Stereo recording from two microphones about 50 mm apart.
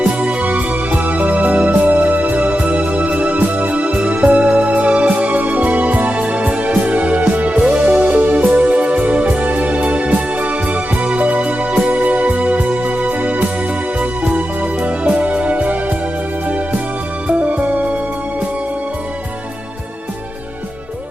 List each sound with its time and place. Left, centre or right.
0.0 s music: right
17.2 s music: right